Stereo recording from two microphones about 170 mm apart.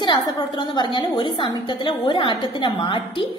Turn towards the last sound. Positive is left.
turn(degrees=30)  # may be behind; listen again after turning